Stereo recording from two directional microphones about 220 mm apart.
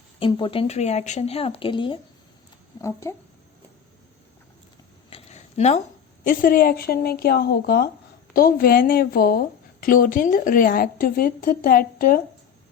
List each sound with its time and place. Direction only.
0.2 s speech: 20° left (ahead or behind)
5.1 s a sound: 30° left (ahead or behind)
6.2 s a woman's voice: 40° left (ahead or behind)